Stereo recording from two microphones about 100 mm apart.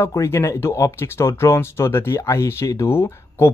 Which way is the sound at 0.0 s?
30° left (ahead or behind).